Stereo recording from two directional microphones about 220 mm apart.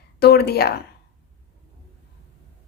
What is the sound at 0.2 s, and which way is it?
Speech, 45° left (ahead or behind).